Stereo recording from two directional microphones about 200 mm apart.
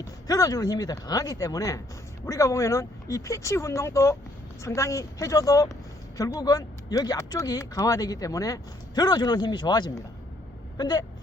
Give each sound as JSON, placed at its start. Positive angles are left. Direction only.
{"t": 0.0, "sound": "speech", "side_deg": 20}